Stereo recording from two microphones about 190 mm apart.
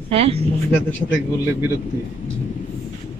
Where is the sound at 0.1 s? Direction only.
30° right (ahead or behind).